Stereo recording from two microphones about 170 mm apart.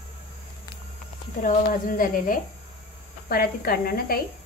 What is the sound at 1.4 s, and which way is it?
Speech, 50° left (ahead or behind).